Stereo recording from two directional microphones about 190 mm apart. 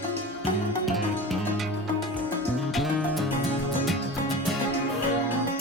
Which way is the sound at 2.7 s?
Centre (ahead or behind).